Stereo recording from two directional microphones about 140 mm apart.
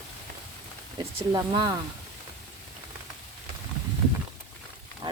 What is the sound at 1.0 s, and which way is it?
Speech, 25° right (ahead or behind).